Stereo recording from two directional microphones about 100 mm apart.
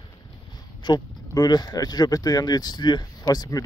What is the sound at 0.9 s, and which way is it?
Speech, 40° left (ahead or behind).